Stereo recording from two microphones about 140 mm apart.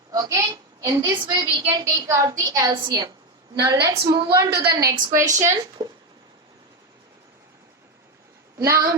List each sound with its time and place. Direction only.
0.1 s a woman's voice: 25° right (ahead or behind)
3.9 s a woman's voice: 35° right (ahead or behind)
4.3 s a woman's voice: 20° right (ahead or behind)
4.8 s a woman's voice: 70° right (ahead or behind)
5.4 s a woman's voice: 25° right (ahead or behind)
8.5 s speech: 20° right (ahead or behind)